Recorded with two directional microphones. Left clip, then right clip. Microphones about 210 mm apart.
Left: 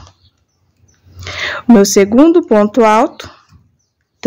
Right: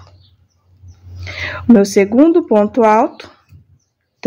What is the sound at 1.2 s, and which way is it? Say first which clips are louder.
Speech: left 2 dB; 20° left (ahead or behind).